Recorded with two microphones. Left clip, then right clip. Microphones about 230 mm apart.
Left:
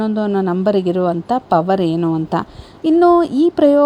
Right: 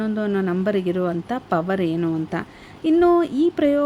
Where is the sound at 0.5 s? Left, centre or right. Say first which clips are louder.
Left 6 dB; centre.